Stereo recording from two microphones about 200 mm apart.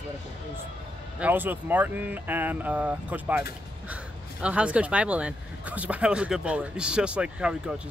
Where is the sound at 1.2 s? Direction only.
10° right (ahead or behind).